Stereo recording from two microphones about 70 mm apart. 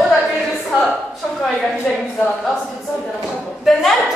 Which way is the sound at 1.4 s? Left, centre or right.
Centre.